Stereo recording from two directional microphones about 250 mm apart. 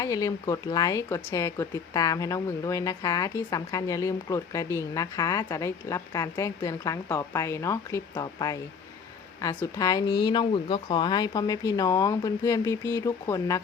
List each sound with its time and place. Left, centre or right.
0.0 s a woman's voice: centre